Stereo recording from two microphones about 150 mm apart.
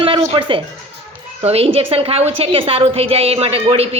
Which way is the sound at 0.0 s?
35° right (ahead or behind).